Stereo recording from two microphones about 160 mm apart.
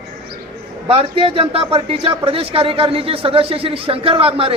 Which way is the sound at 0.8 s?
35° right (ahead or behind).